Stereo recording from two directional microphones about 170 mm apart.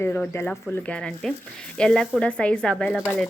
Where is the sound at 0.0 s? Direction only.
15° left (ahead or behind).